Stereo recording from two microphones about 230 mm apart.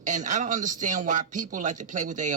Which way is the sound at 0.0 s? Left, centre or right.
Right.